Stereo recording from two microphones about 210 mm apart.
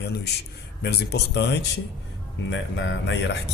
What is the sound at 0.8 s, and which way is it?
Speech, 55° left (ahead or behind).